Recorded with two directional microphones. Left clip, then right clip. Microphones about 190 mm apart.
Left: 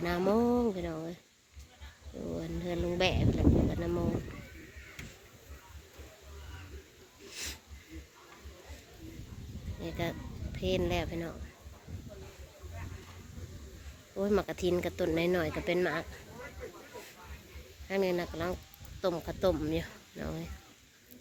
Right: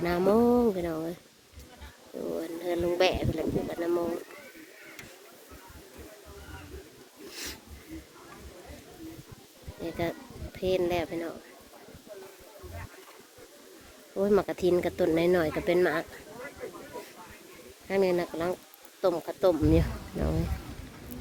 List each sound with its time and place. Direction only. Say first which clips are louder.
0.0 s speech: right 5 dB; 10° right (ahead or behind)
2.6 s speech: right 6 dB; 25° right (ahead or behind)
7.3 s wheeze: right 2 dB; 25° right (ahead or behind)
9.8 s speech: right 5 dB; 10° right (ahead or behind)
14.2 s speech: right 6 dB; 10° right (ahead or behind)
17.8 s speech: right 5 dB; 10° right (ahead or behind)